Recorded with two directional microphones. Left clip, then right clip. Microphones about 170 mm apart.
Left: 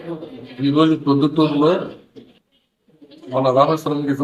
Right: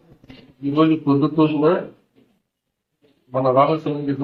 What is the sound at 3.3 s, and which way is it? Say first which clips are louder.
Speech: left 1 dB; 10° left (ahead or behind).